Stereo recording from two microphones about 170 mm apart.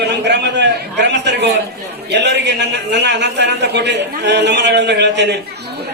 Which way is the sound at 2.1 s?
90° right.